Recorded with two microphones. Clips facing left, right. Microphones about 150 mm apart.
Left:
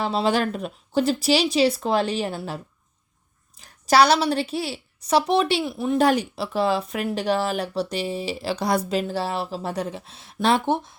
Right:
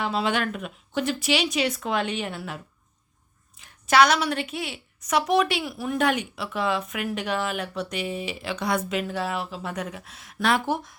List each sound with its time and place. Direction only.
0.0 s speech: 35° left (ahead or behind)
3.6 s a woman's voice: 35° left (ahead or behind)
6.0 s speech: 35° left (ahead or behind)